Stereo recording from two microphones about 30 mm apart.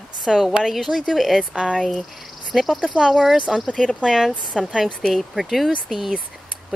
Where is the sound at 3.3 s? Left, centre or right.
Right.